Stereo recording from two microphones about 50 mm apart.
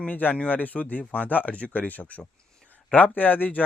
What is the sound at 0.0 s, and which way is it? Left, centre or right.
Speech, left.